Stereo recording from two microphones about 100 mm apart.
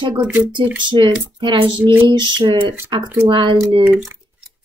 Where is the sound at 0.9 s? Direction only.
50° right (ahead or behind).